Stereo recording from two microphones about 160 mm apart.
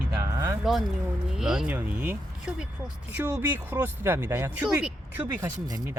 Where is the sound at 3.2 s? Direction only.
10° right (ahead or behind).